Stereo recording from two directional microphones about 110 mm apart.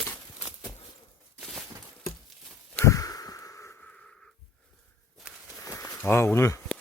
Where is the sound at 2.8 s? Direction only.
35° left (ahead or behind).